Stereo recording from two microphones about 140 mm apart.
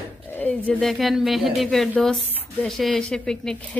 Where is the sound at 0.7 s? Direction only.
5° left (ahead or behind).